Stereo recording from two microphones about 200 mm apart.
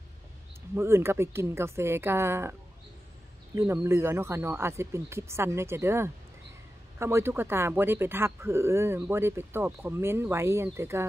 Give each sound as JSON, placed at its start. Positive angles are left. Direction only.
{"t": 0.7, "sound": "speech", "side_deg": -10}
{"t": 3.5, "sound": "speech", "side_deg": -10}